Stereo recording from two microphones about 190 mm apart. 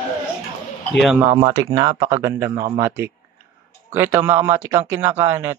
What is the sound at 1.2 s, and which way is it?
Speech, 20° right (ahead or behind).